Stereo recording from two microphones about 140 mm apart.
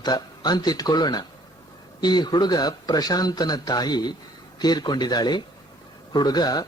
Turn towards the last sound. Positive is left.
turn(degrees=30)  # may be behind; listen again after turning